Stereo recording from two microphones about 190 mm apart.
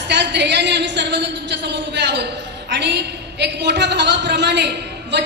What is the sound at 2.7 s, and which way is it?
A woman's voice, 65° right (ahead or behind).